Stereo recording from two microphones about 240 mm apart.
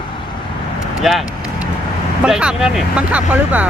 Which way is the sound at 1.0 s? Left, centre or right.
Centre.